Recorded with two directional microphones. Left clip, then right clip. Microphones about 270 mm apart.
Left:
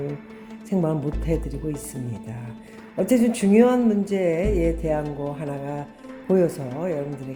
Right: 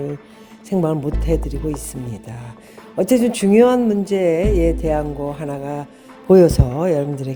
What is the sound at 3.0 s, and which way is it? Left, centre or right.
Speech, right.